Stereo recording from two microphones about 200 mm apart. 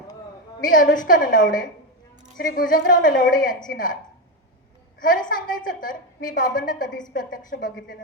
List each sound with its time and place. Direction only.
0.6 s a woman's voice: 40° left (ahead or behind)
4.9 s a woman's voice: 45° left (ahead or behind)